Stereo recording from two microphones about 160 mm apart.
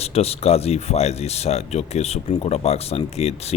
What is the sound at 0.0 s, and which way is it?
Speech, 40° left (ahead or behind).